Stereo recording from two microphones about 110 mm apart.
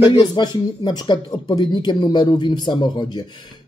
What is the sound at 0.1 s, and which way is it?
Speech, 40° left (ahead or behind).